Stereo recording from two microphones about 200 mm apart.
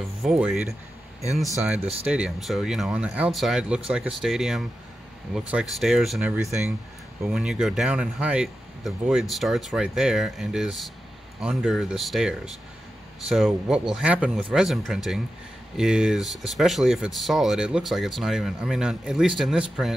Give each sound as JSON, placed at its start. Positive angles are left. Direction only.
{"t": 0.2, "sound": "speech", "side_deg": 0}
{"t": 2.0, "sound": "speech", "side_deg": -5}